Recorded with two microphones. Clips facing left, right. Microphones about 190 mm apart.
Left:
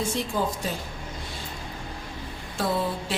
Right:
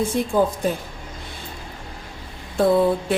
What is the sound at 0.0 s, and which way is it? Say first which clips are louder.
Speech: right 7 dB; 55° right (ahead or behind).